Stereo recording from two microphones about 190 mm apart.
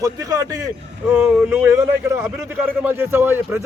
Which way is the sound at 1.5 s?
10° right (ahead or behind).